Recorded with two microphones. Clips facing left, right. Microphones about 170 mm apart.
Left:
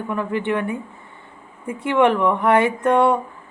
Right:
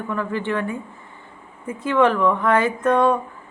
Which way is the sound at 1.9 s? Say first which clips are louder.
Left 1 dB; 20° left (ahead or behind).